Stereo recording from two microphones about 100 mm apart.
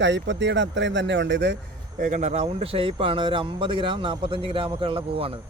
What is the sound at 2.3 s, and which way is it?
Speech, 90° right.